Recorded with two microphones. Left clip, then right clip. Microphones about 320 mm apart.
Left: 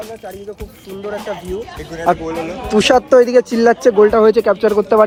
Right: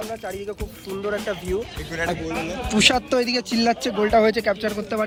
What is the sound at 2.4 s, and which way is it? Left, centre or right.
Speech, centre.